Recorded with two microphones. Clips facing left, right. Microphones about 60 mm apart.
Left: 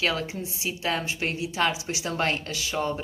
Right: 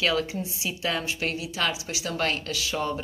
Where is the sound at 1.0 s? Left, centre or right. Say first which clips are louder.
Even; left.